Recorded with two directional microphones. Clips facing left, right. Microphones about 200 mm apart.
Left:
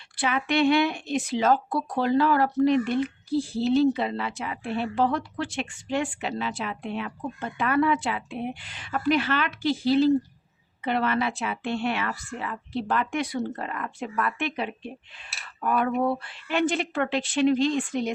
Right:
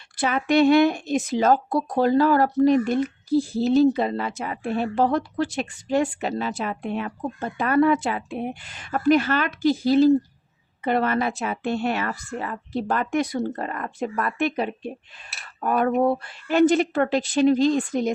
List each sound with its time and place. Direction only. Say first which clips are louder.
0.2 s speech: right 5 dB; 40° right (ahead or behind)